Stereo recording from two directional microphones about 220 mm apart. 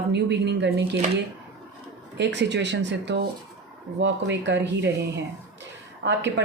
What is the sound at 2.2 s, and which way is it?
Speech, 50° right (ahead or behind).